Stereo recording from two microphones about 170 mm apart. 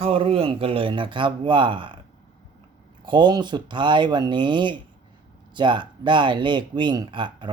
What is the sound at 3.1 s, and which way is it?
Speech, 25° right (ahead or behind).